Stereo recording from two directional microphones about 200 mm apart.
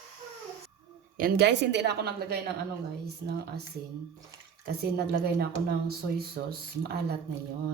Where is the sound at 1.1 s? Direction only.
50° right (ahead or behind).